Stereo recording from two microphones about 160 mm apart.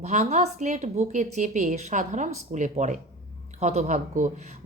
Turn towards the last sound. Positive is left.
turn(degrees=-50)  # may be behind; listen again after turning